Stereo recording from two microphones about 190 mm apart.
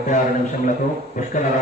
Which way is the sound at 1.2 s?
45° left (ahead or behind).